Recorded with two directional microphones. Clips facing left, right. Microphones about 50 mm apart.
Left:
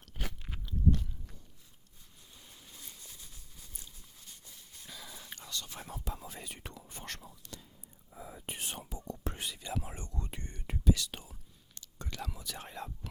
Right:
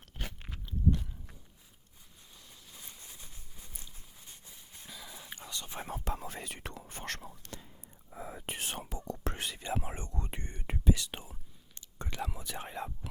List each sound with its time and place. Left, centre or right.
0.6 s biting: centre
2.7 s a sound: centre
4.9 s whispering: centre; by 6.0 s right
6.1 s whispering: right
7.5 s whispering: right
8.1 s whispering: right
9.6 s whispering: right